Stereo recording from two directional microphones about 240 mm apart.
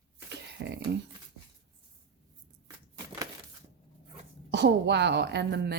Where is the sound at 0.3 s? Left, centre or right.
Right.